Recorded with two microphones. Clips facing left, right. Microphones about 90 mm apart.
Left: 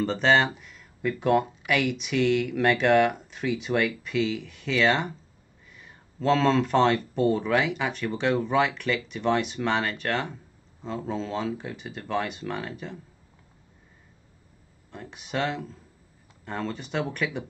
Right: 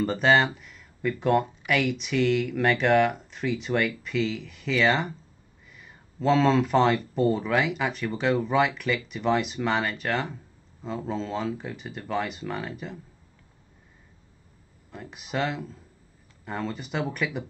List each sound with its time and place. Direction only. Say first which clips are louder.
0.0 s speech: even; 5° right (ahead or behind)
14.9 s speech: even; centre (ahead or behind)